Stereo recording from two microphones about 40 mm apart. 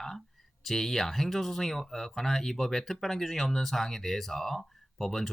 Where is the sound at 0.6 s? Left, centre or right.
Centre.